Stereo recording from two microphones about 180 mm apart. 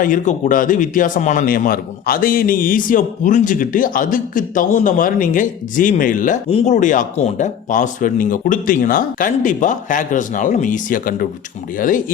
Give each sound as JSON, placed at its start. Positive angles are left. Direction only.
{"t": 0.0, "sound": "a man's voice", "side_deg": 45}
{"t": 6.5, "sound": "a man's voice", "side_deg": 35}